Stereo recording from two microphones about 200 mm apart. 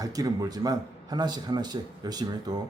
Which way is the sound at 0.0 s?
20° right (ahead or behind).